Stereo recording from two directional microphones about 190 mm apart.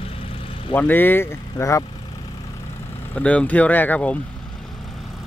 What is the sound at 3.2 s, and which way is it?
Speech, 5° left (ahead or behind).